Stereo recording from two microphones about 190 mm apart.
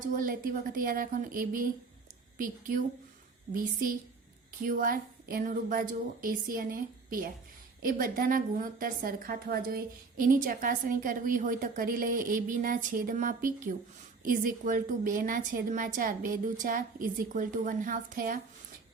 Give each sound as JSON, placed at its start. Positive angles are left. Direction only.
{"t": 0.0, "sound": "a woman's voice", "side_deg": -45}